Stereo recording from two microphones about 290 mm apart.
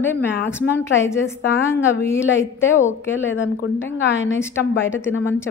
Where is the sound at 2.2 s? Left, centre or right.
Left.